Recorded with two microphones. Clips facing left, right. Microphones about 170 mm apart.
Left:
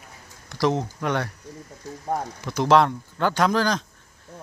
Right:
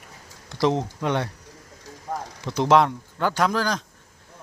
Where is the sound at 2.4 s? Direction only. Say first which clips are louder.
Even; 25° right (ahead or behind).